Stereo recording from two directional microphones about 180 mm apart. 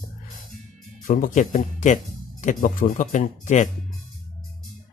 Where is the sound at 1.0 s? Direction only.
50° left (ahead or behind).